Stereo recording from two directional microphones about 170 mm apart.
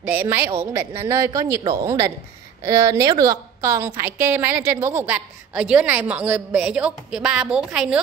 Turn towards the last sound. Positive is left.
turn(degrees=-5)  # may be behind; listen again after turning